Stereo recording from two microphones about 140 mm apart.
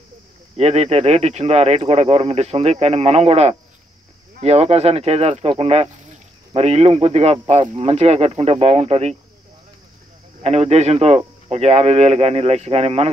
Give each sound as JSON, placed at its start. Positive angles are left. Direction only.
{"t": 0.6, "sound": "speech", "side_deg": -50}
{"t": 10.4, "sound": "speech", "side_deg": -50}